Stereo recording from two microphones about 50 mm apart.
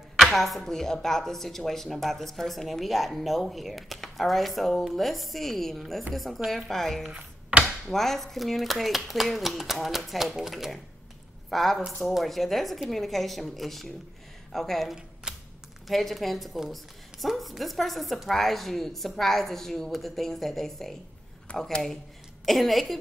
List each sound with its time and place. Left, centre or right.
0.3 s speech: centre
15.3 s a sound: centre
15.9 s speech: centre
21.5 s speech: left
22.4 s speech: centre